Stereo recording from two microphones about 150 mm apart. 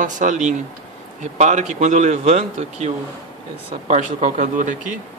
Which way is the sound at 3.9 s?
55° right (ahead or behind).